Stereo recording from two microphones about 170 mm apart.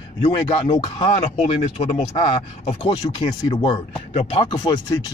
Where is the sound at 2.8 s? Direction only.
30° left (ahead or behind).